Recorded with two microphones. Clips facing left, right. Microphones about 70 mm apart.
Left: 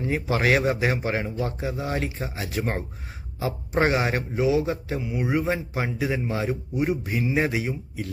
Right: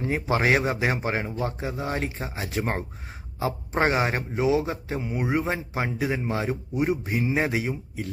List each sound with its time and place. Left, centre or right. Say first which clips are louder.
0.0 s speech: even; right